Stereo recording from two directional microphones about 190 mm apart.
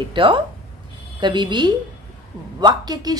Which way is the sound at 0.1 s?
25° right (ahead or behind).